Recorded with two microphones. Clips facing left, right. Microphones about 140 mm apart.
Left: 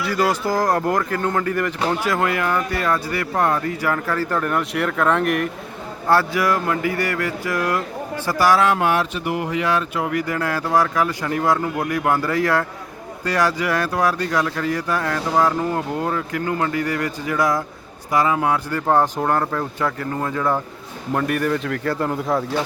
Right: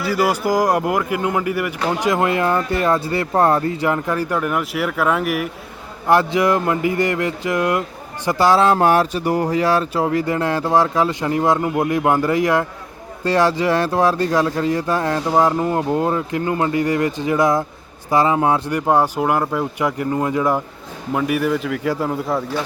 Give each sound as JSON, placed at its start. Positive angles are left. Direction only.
{"t": 0.0, "sound": "speech", "side_deg": -10}
{"t": 6.1, "sound": "a man's voice", "side_deg": -20}